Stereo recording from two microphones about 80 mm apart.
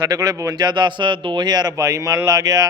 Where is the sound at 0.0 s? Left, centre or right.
Right.